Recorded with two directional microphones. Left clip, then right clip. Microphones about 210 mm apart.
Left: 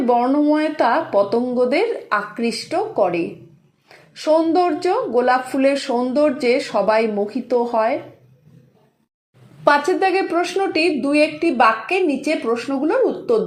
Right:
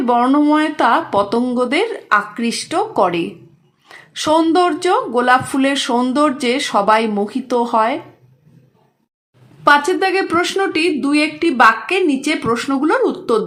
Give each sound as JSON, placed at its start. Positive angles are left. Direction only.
{"t": 0.0, "sound": "speech", "side_deg": -25}
{"t": 9.6, "sound": "speech", "side_deg": -20}